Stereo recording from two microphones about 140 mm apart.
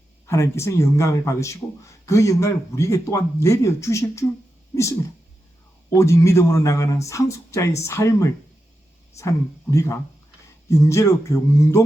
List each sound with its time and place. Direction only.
0.3 s speech: 20° left (ahead or behind)
4.7 s a sound: 20° left (ahead or behind)
6.0 s speech: 20° left (ahead or behind)